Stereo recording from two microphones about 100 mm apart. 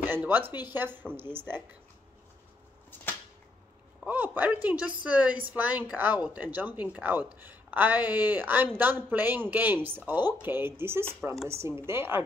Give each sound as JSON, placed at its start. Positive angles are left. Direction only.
{"t": 0.0, "sound": "speech", "side_deg": -20}
{"t": 4.0, "sound": "a woman's voice", "side_deg": -15}